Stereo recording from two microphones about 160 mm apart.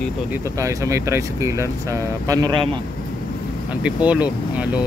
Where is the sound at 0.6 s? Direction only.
20° right (ahead or behind).